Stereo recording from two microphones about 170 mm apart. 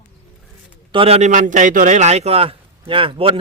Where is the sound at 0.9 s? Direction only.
35° right (ahead or behind).